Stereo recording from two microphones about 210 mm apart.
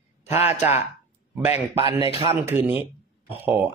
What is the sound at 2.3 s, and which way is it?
Speech, 10° right (ahead or behind).